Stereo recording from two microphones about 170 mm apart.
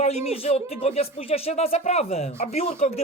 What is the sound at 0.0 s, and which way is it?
Speech, 40° left (ahead or behind).